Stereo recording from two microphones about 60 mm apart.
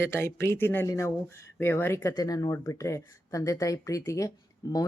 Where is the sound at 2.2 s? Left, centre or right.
Left.